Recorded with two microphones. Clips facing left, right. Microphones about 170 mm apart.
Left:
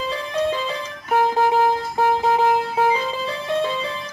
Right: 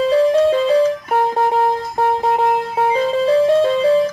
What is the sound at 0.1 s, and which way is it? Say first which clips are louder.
Music: right 10 dB; 40° right (ahead or behind).